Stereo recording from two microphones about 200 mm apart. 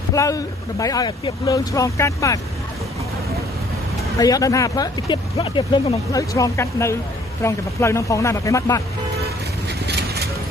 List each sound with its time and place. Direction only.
0.1 s speech: 15° left (ahead or behind)
4.2 s speech: 15° left (ahead or behind)
9.8 s vehicle: 55° right (ahead or behind)